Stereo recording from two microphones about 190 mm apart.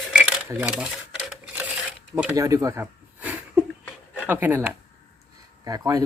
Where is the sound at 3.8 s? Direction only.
10° left (ahead or behind).